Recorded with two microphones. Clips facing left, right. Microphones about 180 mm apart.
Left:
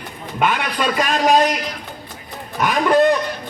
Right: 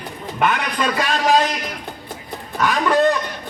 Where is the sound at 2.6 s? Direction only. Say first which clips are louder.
Left 2 dB; 15° left (ahead or behind).